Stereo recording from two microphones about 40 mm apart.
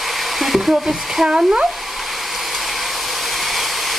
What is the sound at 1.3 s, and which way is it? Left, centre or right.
Speech, right.